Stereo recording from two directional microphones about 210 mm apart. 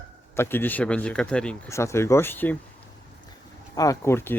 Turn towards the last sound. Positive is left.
turn(degrees=10)  # may be behind; listen again after turning